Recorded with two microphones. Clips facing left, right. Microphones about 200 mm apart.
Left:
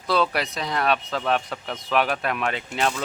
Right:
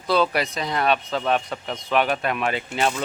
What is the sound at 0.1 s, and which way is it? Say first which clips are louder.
Speech: right 2 dB; centre (ahead or behind).